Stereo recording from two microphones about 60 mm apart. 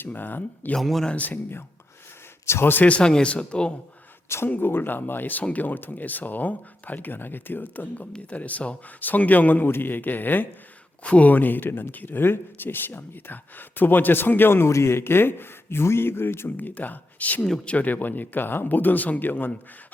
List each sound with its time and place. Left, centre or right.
0.0 s speech: left
0.8 s speech: centre
1.0 s a man's voice: left
2.5 s speech: left
2.8 s a man's voice: left
4.4 s a man's voice: left
14.7 s speech: left
16.6 s a man's voice: left